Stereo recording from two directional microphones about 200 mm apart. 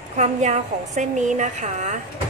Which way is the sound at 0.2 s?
35° right (ahead or behind).